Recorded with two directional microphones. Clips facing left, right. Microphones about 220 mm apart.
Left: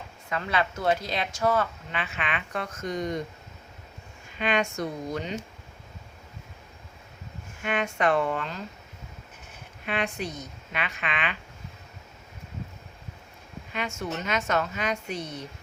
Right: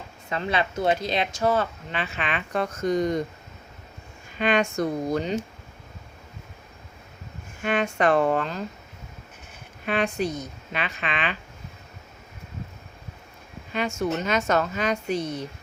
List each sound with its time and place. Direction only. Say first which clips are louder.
0.3 s speech: right 2 dB; 25° right (ahead or behind)
4.4 s speech: right 4 dB; 40° right (ahead or behind)
7.6 s speech: right 3 dB; 35° right (ahead or behind)
9.8 s speech: right 5 dB; 40° right (ahead or behind)
13.7 s speech: right 6 dB; 35° right (ahead or behind)